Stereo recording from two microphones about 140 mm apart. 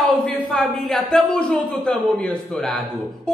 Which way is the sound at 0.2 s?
5° left (ahead or behind).